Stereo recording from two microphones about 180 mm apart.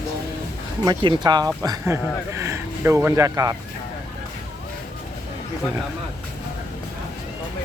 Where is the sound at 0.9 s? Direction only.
25° right (ahead or behind).